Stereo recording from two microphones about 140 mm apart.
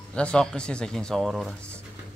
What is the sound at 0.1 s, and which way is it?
Speech, 5° left (ahead or behind).